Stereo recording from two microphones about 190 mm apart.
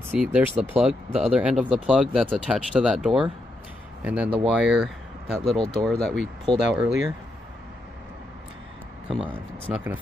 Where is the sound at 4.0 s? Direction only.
10° right (ahead or behind).